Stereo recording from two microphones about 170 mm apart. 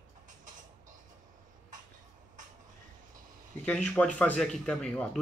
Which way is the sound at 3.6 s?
5° left (ahead or behind).